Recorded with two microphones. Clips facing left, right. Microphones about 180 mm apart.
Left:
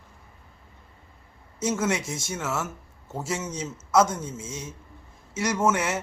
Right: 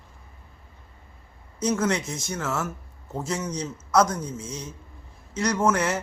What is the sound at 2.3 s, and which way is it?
A man's voice, 5° left (ahead or behind).